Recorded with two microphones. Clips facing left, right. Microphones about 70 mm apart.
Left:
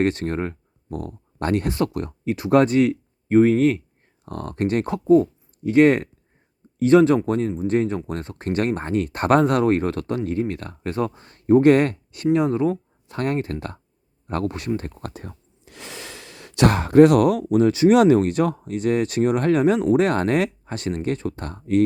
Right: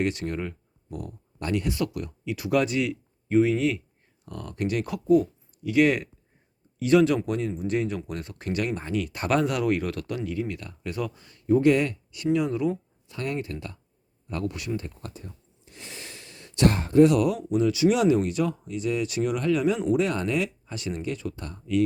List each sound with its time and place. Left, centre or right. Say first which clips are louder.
0.0 s speech: left 6 dB; left
14.8 s speech: left 5 dB; left